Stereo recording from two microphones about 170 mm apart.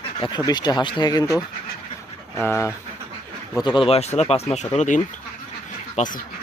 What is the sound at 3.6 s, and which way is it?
Speech, 30° left (ahead or behind).